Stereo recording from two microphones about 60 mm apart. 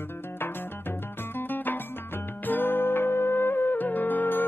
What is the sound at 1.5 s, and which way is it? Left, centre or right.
Music, left.